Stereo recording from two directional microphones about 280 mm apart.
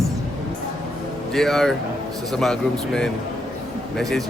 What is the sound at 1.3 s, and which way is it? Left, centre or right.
Speech, centre.